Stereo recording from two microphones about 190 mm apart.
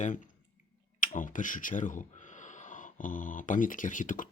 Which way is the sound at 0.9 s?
45° left (ahead or behind).